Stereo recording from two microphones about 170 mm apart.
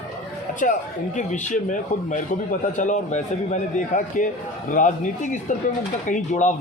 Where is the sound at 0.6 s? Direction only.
50° left (ahead or behind).